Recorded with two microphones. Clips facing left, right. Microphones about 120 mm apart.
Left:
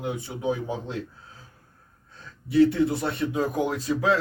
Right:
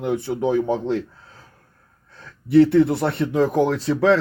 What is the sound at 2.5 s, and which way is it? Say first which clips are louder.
Speech: right 6 dB; 65° right (ahead or behind).